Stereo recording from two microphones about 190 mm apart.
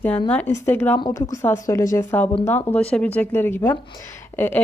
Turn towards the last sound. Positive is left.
turn(degrees=10)  # may be behind; listen again after turning